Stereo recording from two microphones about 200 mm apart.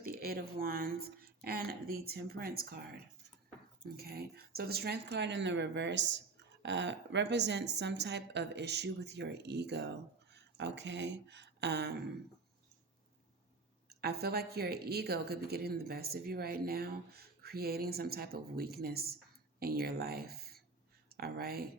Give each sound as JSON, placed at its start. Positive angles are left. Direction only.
{"t": 0.0, "sound": "a woman's voice", "side_deg": -50}
{"t": 3.9, "sound": "speech", "side_deg": -50}
{"t": 13.9, "sound": "a woman's voice", "side_deg": -55}